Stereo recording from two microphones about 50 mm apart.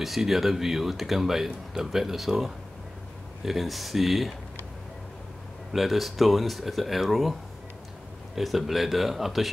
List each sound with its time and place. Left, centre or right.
0.0 s speech: centre
5.7 s speech: centre
8.4 s speech: centre